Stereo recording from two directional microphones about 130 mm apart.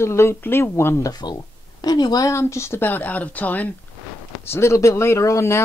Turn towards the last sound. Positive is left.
turn(degrees=20)  # may be behind; listen again after turning